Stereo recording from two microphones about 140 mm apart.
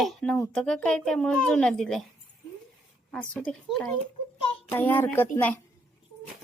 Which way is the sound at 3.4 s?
5° left (ahead or behind).